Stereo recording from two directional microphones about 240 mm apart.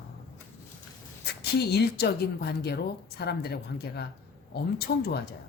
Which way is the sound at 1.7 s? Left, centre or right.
Left.